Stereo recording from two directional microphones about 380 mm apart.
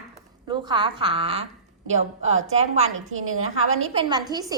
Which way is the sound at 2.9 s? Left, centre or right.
Right.